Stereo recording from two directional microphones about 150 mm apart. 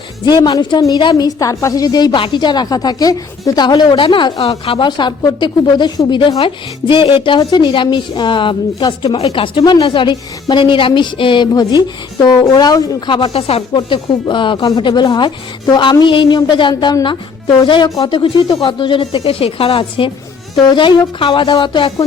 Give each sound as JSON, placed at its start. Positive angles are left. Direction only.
{"t": 0.3, "sound": "a woman's voice", "side_deg": 30}
{"t": 21.2, "sound": "speech", "side_deg": 35}